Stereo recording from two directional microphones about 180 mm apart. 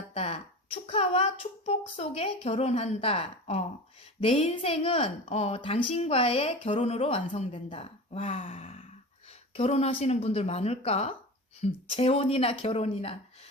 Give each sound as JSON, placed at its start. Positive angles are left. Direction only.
{"t": 0.1, "sound": "a woman's voice", "side_deg": 35}